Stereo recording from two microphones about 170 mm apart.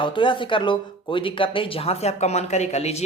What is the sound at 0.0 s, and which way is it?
Speech, 30° left (ahead or behind).